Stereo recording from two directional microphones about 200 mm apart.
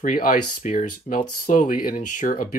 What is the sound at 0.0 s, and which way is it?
Speech, 40° left (ahead or behind).